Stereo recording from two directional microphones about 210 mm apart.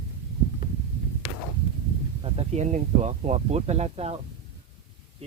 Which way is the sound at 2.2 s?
30° right (ahead or behind).